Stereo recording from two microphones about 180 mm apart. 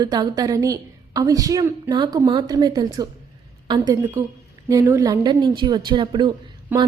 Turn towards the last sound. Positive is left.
turn(degrees=-10)  # may be behind; listen again after turning